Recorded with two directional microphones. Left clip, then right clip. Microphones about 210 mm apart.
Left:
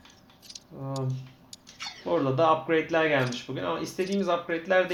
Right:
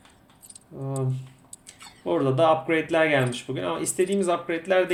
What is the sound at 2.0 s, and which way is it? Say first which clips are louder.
Speech: right 3 dB; 15° right (ahead or behind).